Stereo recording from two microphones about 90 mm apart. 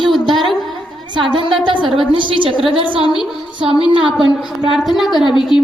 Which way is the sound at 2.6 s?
80° right.